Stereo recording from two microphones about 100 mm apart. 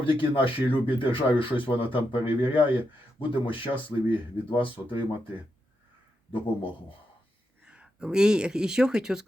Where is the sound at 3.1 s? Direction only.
60° left (ahead or behind).